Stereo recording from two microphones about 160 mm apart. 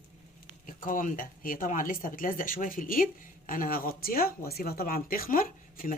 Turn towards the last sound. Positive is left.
turn(degrees=60)  # may be behind; listen again after turning